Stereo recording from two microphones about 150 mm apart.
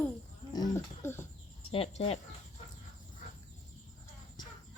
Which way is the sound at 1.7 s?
40° left (ahead or behind).